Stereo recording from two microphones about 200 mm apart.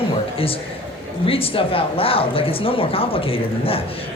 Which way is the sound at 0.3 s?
30° left (ahead or behind).